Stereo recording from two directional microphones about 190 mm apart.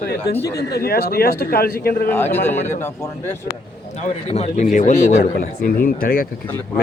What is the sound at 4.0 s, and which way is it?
A man's voice, 35° left (ahead or behind).